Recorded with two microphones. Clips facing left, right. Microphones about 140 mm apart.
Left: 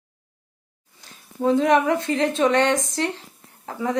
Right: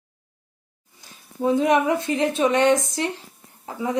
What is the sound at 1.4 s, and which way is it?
Speech, 10° right (ahead or behind).